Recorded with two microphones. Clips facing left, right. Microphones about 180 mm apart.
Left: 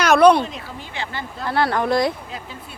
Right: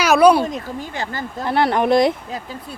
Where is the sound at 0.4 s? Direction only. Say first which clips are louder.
Right 7 dB; 45° right (ahead or behind).